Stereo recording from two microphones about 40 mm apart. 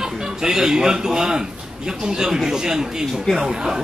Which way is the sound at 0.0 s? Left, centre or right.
Centre.